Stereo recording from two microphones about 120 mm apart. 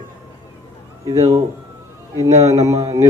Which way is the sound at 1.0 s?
25° right (ahead or behind).